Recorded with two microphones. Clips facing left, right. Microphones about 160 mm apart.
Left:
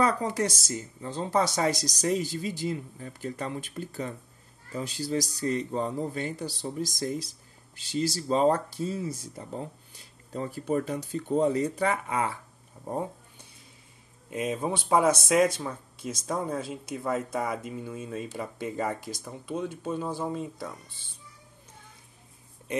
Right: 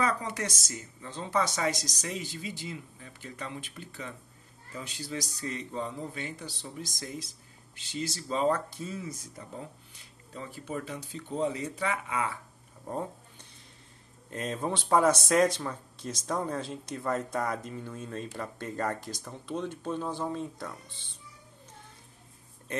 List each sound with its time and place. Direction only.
0.0 s speech: 35° left (ahead or behind)
12.8 s a sound: 15° left (ahead or behind)
14.3 s speech: 10° left (ahead or behind)
22.7 s speech: 15° left (ahead or behind)